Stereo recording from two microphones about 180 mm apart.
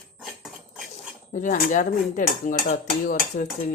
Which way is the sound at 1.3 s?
45° left (ahead or behind).